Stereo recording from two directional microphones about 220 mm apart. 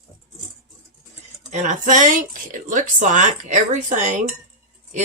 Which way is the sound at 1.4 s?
35° right (ahead or behind).